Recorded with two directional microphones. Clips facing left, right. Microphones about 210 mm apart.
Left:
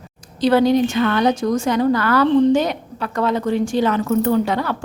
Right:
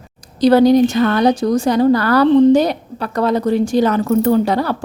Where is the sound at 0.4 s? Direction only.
40° right (ahead or behind).